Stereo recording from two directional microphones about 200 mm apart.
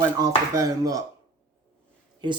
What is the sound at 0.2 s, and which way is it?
Speech, 15° right (ahead or behind).